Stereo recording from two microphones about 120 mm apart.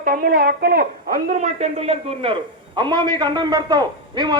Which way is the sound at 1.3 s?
85° right.